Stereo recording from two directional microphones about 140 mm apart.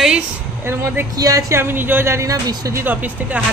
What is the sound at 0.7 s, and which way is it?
Speech, 20° right (ahead or behind).